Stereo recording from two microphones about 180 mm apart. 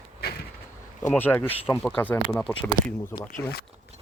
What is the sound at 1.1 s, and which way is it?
Speech, 10° left (ahead or behind).